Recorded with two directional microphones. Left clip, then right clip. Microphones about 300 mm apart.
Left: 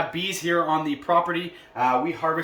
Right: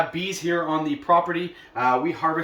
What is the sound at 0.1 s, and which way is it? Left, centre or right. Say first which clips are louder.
Speech: left 1 dB; centre.